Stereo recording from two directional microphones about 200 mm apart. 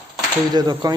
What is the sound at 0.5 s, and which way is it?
Speech, 20° right (ahead or behind).